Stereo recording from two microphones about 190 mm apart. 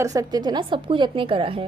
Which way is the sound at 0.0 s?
20° right (ahead or behind).